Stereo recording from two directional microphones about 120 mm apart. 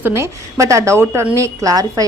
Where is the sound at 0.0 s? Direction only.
25° right (ahead or behind).